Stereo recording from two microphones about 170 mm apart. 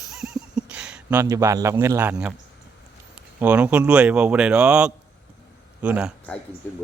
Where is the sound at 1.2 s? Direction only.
20° right (ahead or behind).